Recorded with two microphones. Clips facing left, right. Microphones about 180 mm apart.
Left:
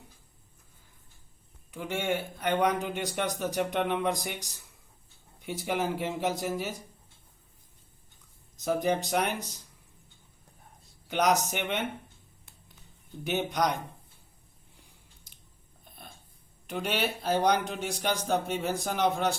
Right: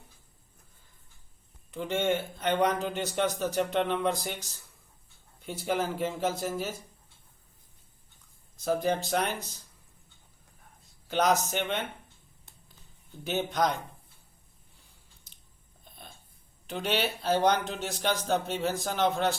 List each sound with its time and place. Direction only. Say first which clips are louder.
1.7 s a man's voice: right 3 dB; 10° left (ahead or behind)
8.6 s a man's voice: even; 15° left (ahead or behind)
11.1 s a man's voice: even; 15° left (ahead or behind)
13.2 s a man's voice: even; 15° left (ahead or behind)
16.6 s a man's voice: right 1 dB; 10° left (ahead or behind)